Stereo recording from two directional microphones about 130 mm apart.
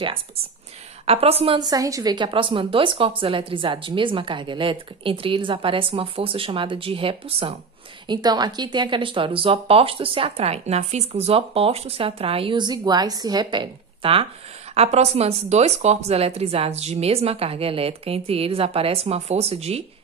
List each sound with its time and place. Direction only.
1.0 s speech: 50° right (ahead or behind)
1.6 s speech: 30° right (ahead or behind); by 7.5 s 45° right (ahead or behind)
8.1 s speech: 30° right (ahead or behind)
14.7 s speech: 55° right (ahead or behind)